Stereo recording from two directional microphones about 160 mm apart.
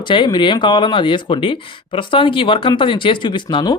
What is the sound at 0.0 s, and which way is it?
Speech, 30° left (ahead or behind).